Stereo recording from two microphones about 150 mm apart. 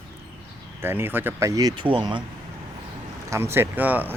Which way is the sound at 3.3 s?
15° right (ahead or behind).